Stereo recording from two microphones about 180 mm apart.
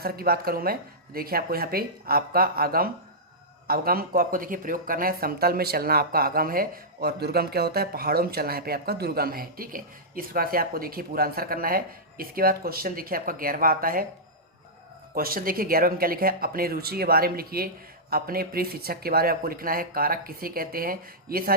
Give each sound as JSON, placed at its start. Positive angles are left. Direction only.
{"t": 0.0, "sound": "speech", "side_deg": -55}
{"t": 15.1, "sound": "speech", "side_deg": -55}